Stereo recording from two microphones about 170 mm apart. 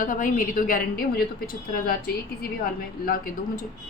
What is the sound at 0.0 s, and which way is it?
A woman's voice, 50° left (ahead or behind).